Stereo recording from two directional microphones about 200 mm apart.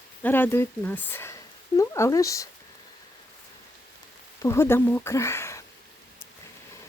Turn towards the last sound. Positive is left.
turn(degrees=15)  # may be behind; listen again after turning